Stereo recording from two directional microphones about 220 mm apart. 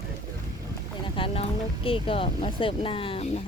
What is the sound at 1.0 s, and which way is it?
Speech, 25° left (ahead or behind).